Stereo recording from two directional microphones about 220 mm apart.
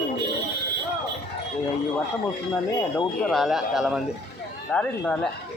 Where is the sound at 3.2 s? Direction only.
Centre (ahead or behind).